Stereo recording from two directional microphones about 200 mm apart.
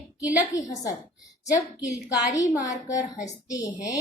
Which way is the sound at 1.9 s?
15° left (ahead or behind).